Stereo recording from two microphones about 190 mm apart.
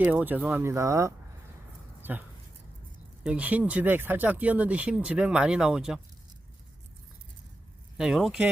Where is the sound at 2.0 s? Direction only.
10° right (ahead or behind).